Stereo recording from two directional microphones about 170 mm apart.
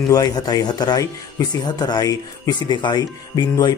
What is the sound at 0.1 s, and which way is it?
Speech, 20° left (ahead or behind).